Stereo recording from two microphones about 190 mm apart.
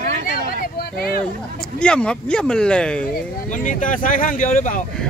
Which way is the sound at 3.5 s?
45° left (ahead or behind).